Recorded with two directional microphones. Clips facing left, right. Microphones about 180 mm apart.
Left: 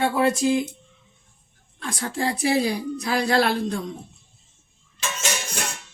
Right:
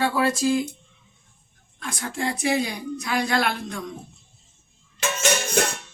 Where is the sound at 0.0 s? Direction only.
20° left (ahead or behind).